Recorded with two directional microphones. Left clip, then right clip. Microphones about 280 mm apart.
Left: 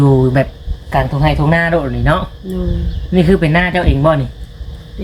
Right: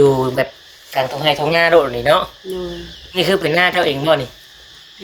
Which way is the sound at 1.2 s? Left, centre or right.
Right.